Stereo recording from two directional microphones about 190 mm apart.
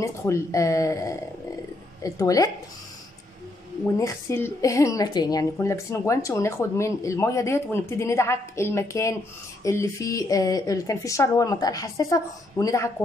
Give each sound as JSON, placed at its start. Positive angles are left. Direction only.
{"t": 0.0, "sound": "speech", "side_deg": 15}
{"t": 4.0, "sound": "speech", "side_deg": 15}